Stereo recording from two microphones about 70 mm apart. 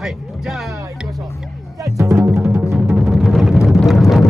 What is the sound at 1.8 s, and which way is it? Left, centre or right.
Speech, right.